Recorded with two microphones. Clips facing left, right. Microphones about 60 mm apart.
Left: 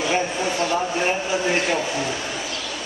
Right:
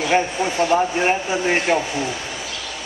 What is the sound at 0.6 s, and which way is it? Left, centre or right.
Speech, right.